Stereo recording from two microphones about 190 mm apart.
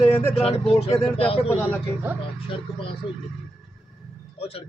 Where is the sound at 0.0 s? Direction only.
15° left (ahead or behind).